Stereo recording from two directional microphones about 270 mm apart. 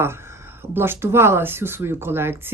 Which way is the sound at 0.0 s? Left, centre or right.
Centre.